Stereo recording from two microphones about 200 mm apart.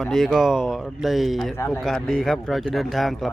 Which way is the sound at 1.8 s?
Centre (ahead or behind).